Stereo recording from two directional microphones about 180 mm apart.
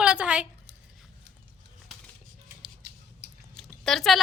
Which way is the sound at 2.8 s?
65° right (ahead or behind).